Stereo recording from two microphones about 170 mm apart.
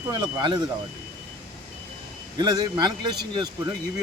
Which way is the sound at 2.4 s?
25° right (ahead or behind).